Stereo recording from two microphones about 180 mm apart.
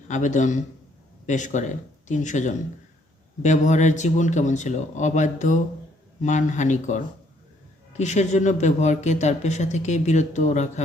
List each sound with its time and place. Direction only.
0.1 s speech: 45° left (ahead or behind)